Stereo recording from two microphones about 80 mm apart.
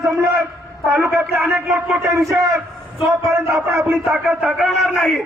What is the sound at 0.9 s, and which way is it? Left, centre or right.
Speech, right.